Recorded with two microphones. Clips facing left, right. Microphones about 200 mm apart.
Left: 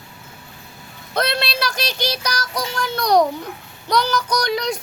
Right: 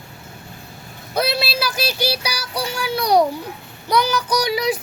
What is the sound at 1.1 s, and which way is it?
Child singing, 5° right (ahead or behind).